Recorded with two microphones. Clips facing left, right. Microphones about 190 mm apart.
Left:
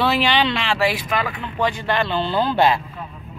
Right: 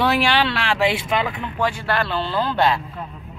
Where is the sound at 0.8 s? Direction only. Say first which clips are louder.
Right 3 dB; 25° right (ahead or behind).